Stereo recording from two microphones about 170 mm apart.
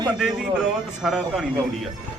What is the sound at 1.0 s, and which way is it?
Speech, centre (ahead or behind).